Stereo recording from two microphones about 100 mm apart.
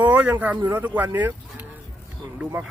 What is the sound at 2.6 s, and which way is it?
Speech, 15° right (ahead or behind).